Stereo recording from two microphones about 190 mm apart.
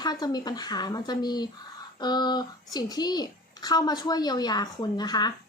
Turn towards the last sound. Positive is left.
turn(degrees=20)  # may be behind; listen again after turning